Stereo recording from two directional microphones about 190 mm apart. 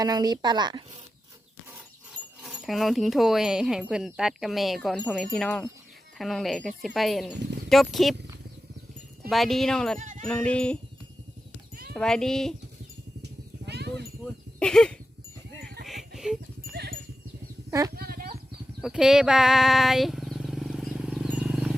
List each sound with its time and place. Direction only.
0.0 s speech: 20° right (ahead or behind)
2.4 s speech: centre (ahead or behind)
9.3 s speech: centre (ahead or behind)
10.0 s speech: 40° right (ahead or behind)
10.2 s speech: 5° left (ahead or behind)
11.9 s speech: 5° left (ahead or behind)
13.2 s a sound: 60° right (ahead or behind)
14.6 s speech: 5° left (ahead or behind)
15.6 s music: 50° right (ahead or behind)
15.9 s a sound: centre (ahead or behind)
16.7 s wind chime: 60° right (ahead or behind)
17.7 s speech: 15° right (ahead or behind)
17.9 s horse: 50° right (ahead or behind)
18.8 s a sound: 5° right (ahead or behind)